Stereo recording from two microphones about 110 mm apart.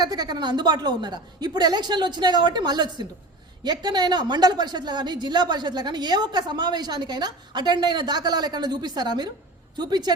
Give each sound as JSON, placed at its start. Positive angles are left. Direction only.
{"t": 0.0, "sound": "a woman's voice", "side_deg": -40}